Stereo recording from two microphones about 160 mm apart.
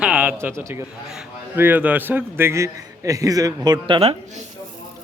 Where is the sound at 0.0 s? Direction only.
10° right (ahead or behind).